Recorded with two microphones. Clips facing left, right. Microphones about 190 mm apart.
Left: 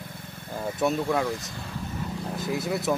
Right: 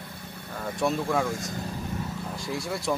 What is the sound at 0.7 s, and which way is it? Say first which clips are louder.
Speech: left 1 dB; centre (ahead or behind).